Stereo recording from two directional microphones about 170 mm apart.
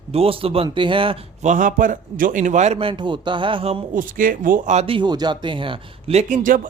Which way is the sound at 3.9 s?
55° right (ahead or behind).